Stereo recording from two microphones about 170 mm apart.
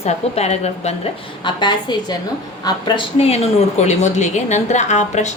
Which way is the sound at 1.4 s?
25° left (ahead or behind).